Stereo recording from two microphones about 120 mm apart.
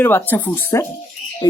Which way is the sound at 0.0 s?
15° left (ahead or behind).